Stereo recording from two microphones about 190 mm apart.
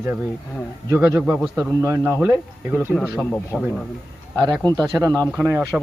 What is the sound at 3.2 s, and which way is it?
Speech, 5° left (ahead or behind).